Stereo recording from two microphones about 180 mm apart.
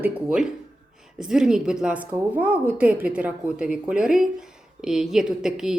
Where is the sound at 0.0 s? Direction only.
5° right (ahead or behind).